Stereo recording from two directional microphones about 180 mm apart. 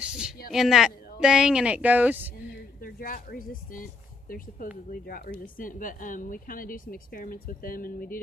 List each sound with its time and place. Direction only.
0.0 s a sound: 5° right (ahead or behind)
0.5 s speech: centre (ahead or behind)
2.8 s speech: 55° left (ahead or behind)
5.0 s a woman's voice: 55° left (ahead or behind)